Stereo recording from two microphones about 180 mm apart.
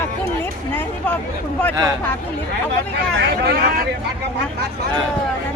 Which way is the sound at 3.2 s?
65° right (ahead or behind).